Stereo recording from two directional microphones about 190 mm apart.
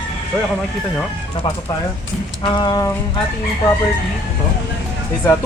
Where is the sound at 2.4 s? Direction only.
20° left (ahead or behind).